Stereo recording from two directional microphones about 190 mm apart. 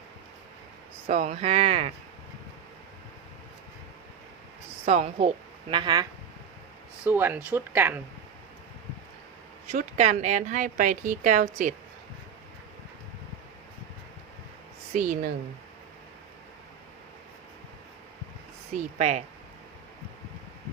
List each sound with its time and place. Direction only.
1.0 s speech: 35° right (ahead or behind)
4.9 s speech: 35° right (ahead or behind)
5.7 s speech: 20° right (ahead or behind)
7.0 s speech: 10° right (ahead or behind)
9.7 s speech: 35° right (ahead or behind)
14.9 s speech: 45° right (ahead or behind)
18.7 s speech: 40° right (ahead or behind)